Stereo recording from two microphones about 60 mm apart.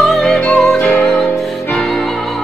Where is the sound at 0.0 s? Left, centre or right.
Centre.